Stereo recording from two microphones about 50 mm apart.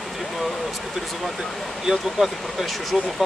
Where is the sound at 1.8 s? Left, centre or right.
Centre.